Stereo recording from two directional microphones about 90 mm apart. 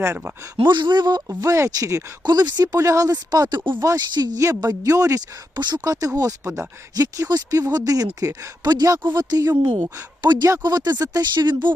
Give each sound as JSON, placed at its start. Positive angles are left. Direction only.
{"t": 0.0, "sound": "speech", "side_deg": -30}
{"t": 0.5, "sound": "speech", "side_deg": -60}
{"t": 2.2, "sound": "speech", "side_deg": -50}
{"t": 2.7, "sound": "speech", "side_deg": -35}
{"t": 5.5, "sound": "speech", "side_deg": -55}